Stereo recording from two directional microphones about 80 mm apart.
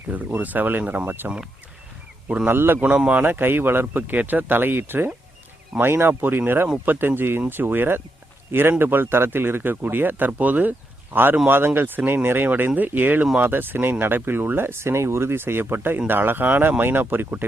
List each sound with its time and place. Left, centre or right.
0.1 s speech: centre
2.5 s speech: right
2.8 s speech: centre